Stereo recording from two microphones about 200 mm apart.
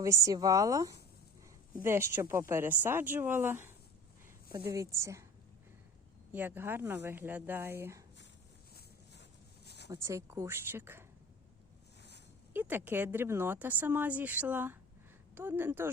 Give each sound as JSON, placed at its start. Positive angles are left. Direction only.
{"t": 0.0, "sound": "speech", "side_deg": -15}
{"t": 6.3, "sound": "speech", "side_deg": -10}
{"t": 9.6, "sound": "a sound", "side_deg": 55}
{"t": 9.9, "sound": "speech", "side_deg": -15}
{"t": 12.5, "sound": "speech", "side_deg": -10}